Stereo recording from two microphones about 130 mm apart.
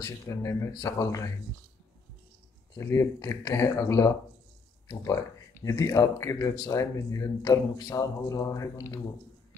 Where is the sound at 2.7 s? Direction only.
25° left (ahead or behind).